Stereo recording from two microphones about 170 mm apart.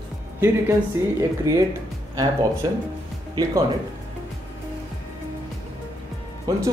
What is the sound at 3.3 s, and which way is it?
Speech, 20° right (ahead or behind).